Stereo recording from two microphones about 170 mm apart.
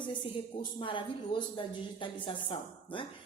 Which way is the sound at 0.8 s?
30° left (ahead or behind).